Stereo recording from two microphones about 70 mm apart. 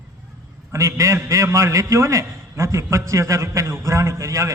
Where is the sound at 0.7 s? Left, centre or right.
Right.